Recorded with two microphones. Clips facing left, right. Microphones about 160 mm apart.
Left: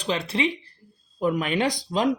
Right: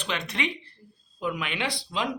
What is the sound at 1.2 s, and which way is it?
Speech, 45° left (ahead or behind).